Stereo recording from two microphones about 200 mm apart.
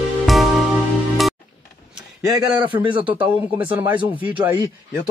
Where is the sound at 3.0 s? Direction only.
10° right (ahead or behind).